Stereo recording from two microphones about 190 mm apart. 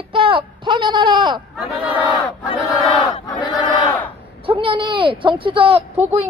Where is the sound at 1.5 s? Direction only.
Centre (ahead or behind).